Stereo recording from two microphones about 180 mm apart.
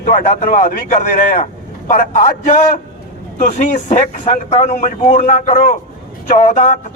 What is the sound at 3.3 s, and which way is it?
Speech, 45° left (ahead or behind).